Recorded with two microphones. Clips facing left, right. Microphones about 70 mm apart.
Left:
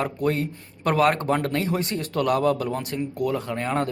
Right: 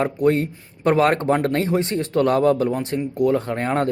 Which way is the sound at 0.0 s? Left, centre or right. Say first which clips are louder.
Right 6 dB; right.